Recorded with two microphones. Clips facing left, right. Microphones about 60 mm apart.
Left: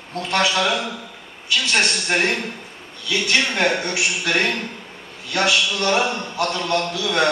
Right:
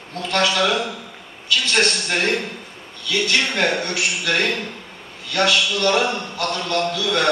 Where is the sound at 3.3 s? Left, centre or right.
Left.